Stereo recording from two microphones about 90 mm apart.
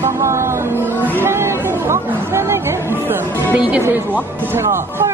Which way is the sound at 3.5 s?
15° right (ahead or behind).